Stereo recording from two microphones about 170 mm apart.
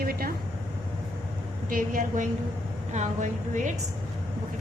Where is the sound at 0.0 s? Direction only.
60° right (ahead or behind).